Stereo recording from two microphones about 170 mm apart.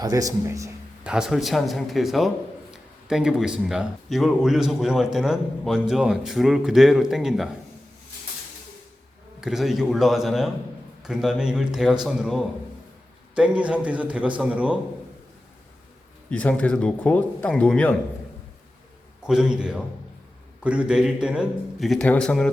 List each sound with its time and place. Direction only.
0.0 s speech: 20° right (ahead or behind)
1.0 s speech: 5° right (ahead or behind)
9.4 s a man's voice: centre (ahead or behind)
16.3 s speech: 10° left (ahead or behind)
19.2 s speech: 5° right (ahead or behind)